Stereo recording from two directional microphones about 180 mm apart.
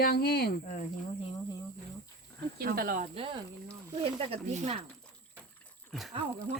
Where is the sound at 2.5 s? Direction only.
55° right (ahead or behind).